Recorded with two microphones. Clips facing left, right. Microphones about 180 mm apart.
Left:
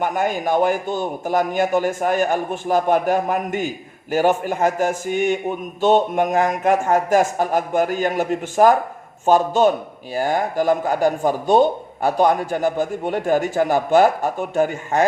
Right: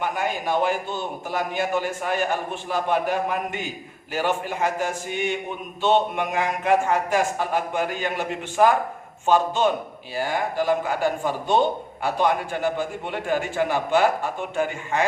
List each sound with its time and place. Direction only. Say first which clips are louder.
0.0 s a man's voice: left 5 dB; 45° left (ahead or behind)